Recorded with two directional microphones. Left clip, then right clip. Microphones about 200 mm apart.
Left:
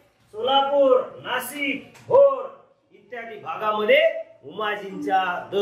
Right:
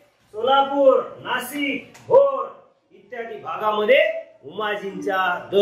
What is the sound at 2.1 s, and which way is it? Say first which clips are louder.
A man's voice: even; 15° right (ahead or behind).